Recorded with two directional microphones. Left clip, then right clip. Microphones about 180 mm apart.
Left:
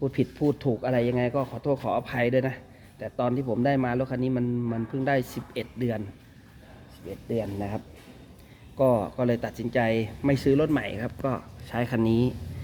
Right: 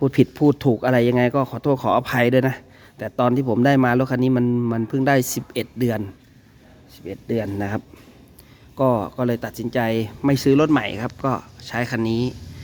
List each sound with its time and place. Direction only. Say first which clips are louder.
0.0 s a man's voice: right 9 dB; 65° right (ahead or behind)
7.3 s a man's voice: right 6 dB; 50° right (ahead or behind)
8.8 s speech: right 3 dB; 40° right (ahead or behind)
11.7 s speech: right 3 dB; 10° right (ahead or behind)